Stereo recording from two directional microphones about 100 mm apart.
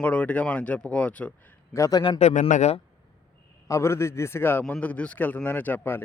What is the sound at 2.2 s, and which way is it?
Speech, 90° left.